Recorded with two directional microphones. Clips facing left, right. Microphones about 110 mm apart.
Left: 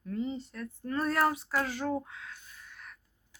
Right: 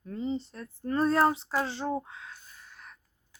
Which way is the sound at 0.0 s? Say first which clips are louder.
Right 2 dB; 30° right (ahead or behind).